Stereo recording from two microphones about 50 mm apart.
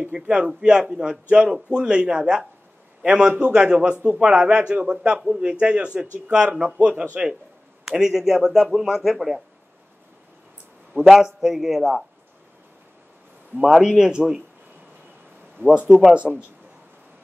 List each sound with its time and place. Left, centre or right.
0.0 s a man's voice: right; by 9.4 s centre
11.1 s a man's voice: centre
13.6 s speech: centre
15.6 s speech: right
16.3 s a man's voice: centre